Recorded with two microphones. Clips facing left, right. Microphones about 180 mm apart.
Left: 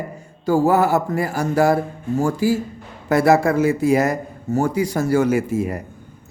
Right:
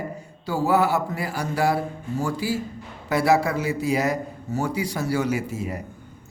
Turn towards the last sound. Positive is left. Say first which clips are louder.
# left 7 dB
turn(degrees=55)  # may be behind; listen again after turning